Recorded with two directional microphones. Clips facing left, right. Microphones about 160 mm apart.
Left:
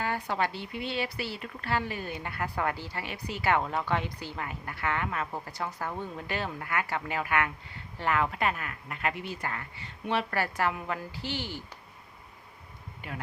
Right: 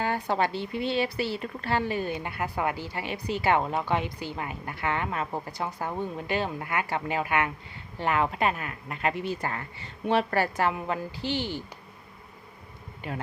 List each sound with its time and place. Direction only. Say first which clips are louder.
0.0 s speech: right 4 dB; 30° right (ahead or behind)